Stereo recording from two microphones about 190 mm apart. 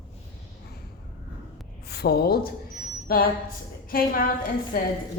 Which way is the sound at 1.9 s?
55° left (ahead or behind).